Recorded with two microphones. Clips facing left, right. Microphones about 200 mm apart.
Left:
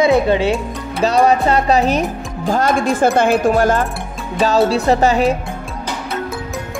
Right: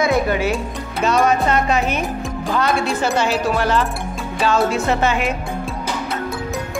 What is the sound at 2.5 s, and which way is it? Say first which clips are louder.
Speech: left 4 dB; 45° left (ahead or behind).